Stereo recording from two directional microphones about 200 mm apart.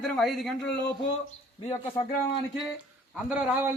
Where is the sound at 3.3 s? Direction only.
10° right (ahead or behind).